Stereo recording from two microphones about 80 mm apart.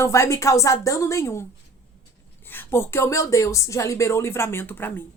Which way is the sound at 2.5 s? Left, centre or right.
Left.